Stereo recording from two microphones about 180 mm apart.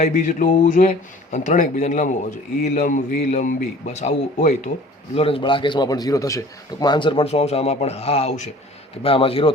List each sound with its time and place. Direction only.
0.0 s a man's voice: 45° left (ahead or behind)